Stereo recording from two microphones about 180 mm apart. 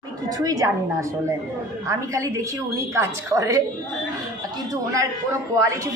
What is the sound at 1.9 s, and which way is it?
A woman's voice, 15° right (ahead or behind).